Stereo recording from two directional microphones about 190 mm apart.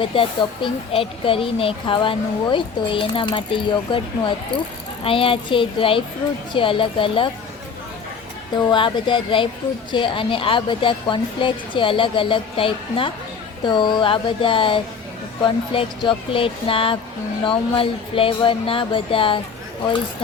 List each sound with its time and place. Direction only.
0.0 s speech: 25° left (ahead or behind)
8.5 s speech: 25° left (ahead or behind)